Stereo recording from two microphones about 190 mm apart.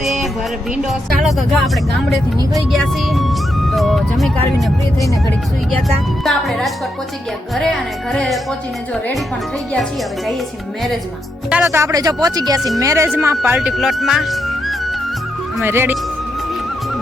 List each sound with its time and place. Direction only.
0.0 s music: centre (ahead or behind)
0.8 s speech: centre (ahead or behind)
6.2 s speech: centre (ahead or behind)
11.4 s speech: 10° right (ahead or behind)
13.1 s speech: 5° right (ahead or behind)
15.6 s speech: 10° right (ahead or behind)